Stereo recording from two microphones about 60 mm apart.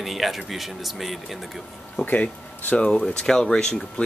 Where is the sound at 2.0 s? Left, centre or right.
Left.